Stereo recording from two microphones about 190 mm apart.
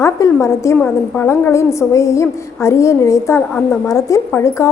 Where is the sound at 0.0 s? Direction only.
15° left (ahead or behind).